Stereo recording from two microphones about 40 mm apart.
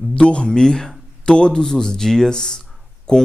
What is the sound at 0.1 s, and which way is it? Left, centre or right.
Speech, left.